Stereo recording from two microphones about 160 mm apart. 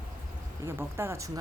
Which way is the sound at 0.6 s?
15° right (ahead or behind).